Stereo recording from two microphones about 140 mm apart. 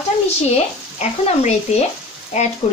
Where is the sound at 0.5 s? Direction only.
50° left (ahead or behind).